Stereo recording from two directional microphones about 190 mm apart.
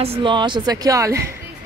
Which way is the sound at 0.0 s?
30° right (ahead or behind).